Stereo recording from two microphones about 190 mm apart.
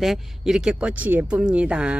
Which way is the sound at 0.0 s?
Centre (ahead or behind).